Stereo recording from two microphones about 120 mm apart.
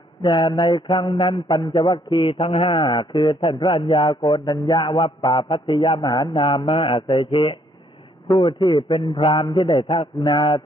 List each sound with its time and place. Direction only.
0.2 s a man's voice: 40° left (ahead or behind)